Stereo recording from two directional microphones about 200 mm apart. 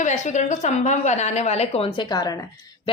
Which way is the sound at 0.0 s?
35° left (ahead or behind).